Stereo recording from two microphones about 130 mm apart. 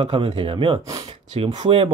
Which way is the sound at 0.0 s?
45° right (ahead or behind).